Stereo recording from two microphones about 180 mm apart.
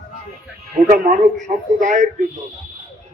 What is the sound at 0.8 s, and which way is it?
A man's voice, 40° right (ahead or behind).